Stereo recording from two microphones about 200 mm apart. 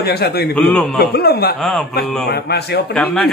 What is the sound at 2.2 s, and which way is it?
Speech, 55° left (ahead or behind).